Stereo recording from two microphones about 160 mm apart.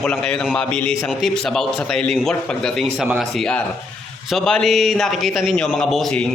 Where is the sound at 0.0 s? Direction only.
5° left (ahead or behind).